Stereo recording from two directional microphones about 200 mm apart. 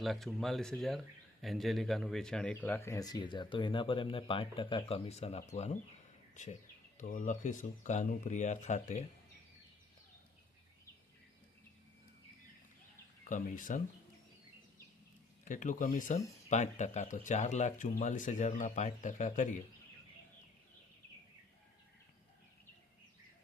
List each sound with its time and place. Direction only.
0.0 s speech: centre (ahead or behind); by 9.0 s 35° left (ahead or behind)
13.2 s speech: 40° left (ahead or behind)
15.4 s speech: 40° left (ahead or behind)